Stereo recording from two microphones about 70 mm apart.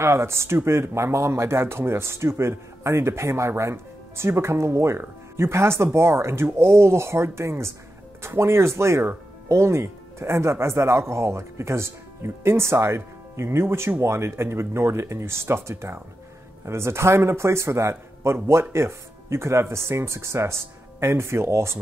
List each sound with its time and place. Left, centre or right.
0.0 s speech: right